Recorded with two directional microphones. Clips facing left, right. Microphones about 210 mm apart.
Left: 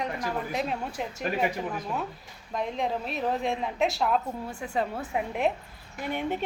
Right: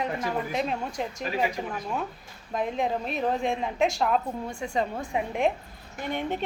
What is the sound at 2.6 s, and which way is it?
Speech, centre (ahead or behind).